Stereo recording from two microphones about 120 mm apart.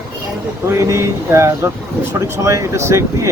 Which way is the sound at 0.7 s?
25° right (ahead or behind).